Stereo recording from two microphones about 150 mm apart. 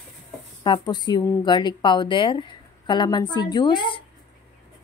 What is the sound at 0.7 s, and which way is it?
A woman's voice, 30° left (ahead or behind).